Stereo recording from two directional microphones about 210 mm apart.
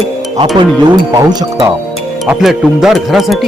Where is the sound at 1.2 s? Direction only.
15° right (ahead or behind).